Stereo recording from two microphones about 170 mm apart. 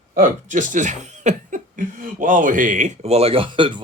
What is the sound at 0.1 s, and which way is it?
Speech, 50° right (ahead or behind).